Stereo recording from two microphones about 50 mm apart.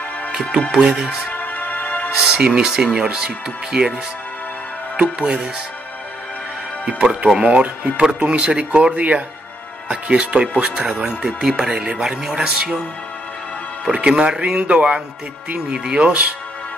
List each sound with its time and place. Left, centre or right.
0.7 s speech: right
1.3 s music: left
2.3 s speech: centre
4.9 s speech: right
6.9 s speech: right
13.9 s speech: right